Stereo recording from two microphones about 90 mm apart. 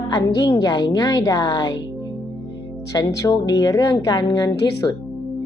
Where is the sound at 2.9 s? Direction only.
40° left (ahead or behind).